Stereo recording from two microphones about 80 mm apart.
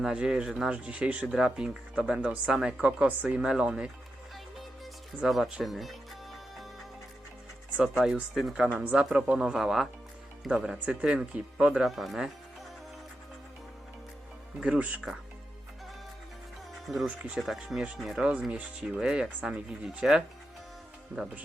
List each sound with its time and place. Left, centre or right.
0.0 s speech: centre
5.2 s speech: centre
7.8 s speech: centre
14.6 s speech: centre
16.8 s speech: centre
18.3 s speech: centre